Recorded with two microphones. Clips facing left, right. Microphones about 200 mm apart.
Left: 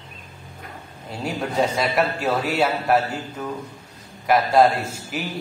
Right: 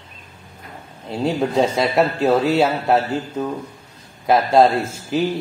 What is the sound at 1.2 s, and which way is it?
A man's voice, 25° right (ahead or behind).